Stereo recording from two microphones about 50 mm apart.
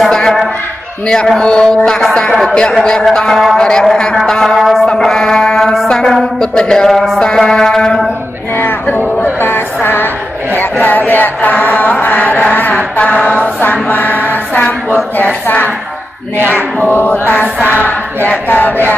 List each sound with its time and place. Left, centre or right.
0.1 s a sound: centre
1.0 s music: centre
3.5 s music: centre
5.0 s speech: centre
6.9 s a sound: centre
7.2 s music: centre
8.9 s music: left
10.5 s chant: left
13.0 s a sound: left
15.1 s speech: left
16.9 s speech: left
18.5 s speech: left